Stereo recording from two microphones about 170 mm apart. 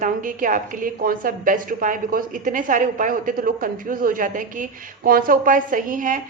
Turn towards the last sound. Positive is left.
turn(degrees=-50)  # may be behind; listen again after turning